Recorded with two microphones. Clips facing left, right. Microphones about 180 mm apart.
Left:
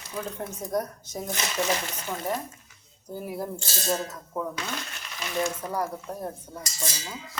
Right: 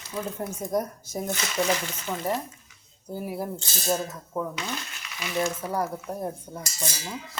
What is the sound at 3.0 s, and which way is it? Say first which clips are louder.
Speech: right 1 dB; 10° right (ahead or behind).